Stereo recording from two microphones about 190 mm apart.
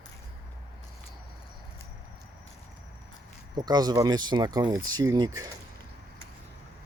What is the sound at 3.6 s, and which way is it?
Speech, 20° right (ahead or behind).